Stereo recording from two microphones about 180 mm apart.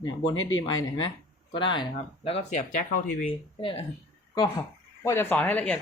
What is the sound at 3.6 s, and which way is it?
Speech, 30° left (ahead or behind).